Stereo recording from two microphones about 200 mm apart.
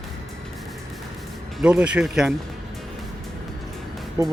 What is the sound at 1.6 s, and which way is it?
Speech, 5° right (ahead or behind).